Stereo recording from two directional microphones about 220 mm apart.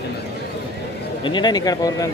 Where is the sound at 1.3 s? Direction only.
20° left (ahead or behind).